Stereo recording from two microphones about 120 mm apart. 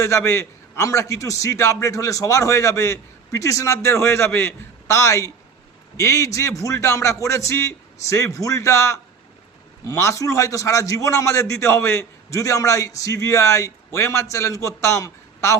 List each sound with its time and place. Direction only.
0.0 s a man's voice: 25° left (ahead or behind)